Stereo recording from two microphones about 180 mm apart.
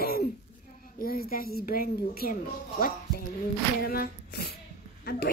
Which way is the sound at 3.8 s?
55° left (ahead or behind).